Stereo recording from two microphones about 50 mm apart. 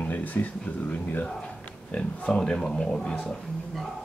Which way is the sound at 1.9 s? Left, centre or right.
Left.